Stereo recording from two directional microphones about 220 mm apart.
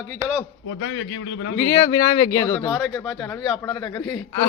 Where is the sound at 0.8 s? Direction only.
65° left (ahead or behind).